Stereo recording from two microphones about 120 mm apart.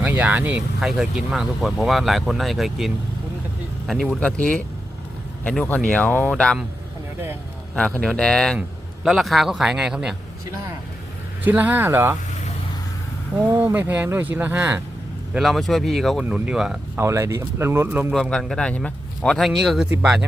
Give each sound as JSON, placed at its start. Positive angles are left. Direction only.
{"t": 0.0, "sound": "speech", "side_deg": -15}
{"t": 7.8, "sound": "speech", "side_deg": 5}
{"t": 11.4, "sound": "speech", "side_deg": -15}
{"t": 13.4, "sound": "speech", "side_deg": -15}
{"t": 15.3, "sound": "speech", "side_deg": 0}
{"t": 17.0, "sound": "speech", "side_deg": -25}
{"t": 18.1, "sound": "speech", "side_deg": 5}